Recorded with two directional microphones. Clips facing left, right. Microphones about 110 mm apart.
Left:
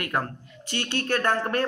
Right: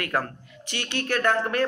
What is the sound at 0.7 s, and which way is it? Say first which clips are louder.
Speech: left 1 dB; 30° left (ahead or behind).